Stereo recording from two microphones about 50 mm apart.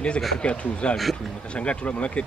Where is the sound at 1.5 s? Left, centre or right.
Left.